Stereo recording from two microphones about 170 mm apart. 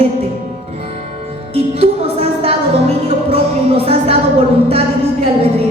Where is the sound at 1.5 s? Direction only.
35° right (ahead or behind).